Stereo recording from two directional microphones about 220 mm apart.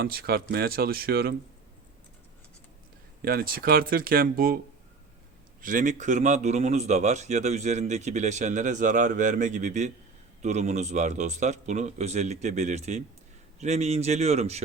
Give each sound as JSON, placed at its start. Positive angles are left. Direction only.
{"t": 0.0, "sound": "speech", "side_deg": -45}
{"t": 3.2, "sound": "speech", "side_deg": -40}
{"t": 5.6, "sound": "speech", "side_deg": -35}